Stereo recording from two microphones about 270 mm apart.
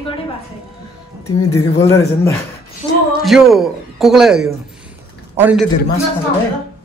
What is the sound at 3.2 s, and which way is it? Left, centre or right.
A man's voice, centre.